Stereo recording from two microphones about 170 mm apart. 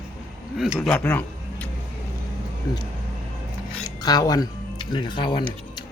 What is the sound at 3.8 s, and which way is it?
Speech, 20° left (ahead or behind).